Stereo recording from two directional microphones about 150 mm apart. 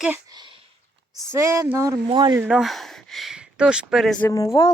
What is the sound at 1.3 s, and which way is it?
Speech, 20° right (ahead or behind).